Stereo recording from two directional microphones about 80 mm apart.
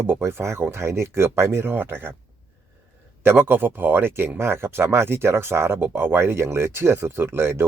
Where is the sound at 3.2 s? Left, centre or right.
Right.